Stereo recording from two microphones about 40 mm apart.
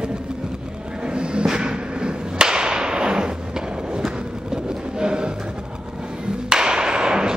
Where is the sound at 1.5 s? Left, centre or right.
Centre.